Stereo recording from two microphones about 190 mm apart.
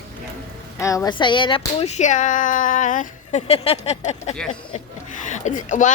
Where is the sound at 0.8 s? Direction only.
15° left (ahead or behind).